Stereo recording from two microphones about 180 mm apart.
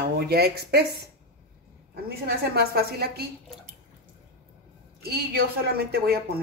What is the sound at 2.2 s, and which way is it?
Speech, 60° right (ahead or behind).